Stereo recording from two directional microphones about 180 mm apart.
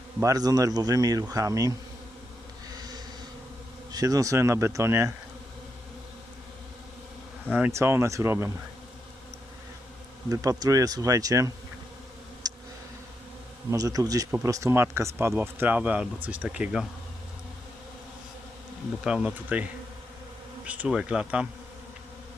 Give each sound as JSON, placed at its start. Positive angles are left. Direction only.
{"t": 0.2, "sound": "speech", "side_deg": -20}
{"t": 2.7, "sound": "bee", "side_deg": -20}
{"t": 3.9, "sound": "speech", "side_deg": -20}
{"t": 7.5, "sound": "speech", "side_deg": -10}
{"t": 10.2, "sound": "speech", "side_deg": -20}
{"t": 12.4, "sound": "a sound", "side_deg": -20}
{"t": 13.7, "sound": "speech", "side_deg": -20}
{"t": 19.0, "sound": "speech", "side_deg": -5}
{"t": 20.7, "sound": "speech", "side_deg": -5}